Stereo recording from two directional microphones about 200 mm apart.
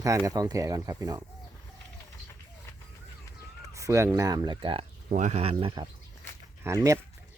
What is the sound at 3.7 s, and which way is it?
Speech, 15° right (ahead or behind).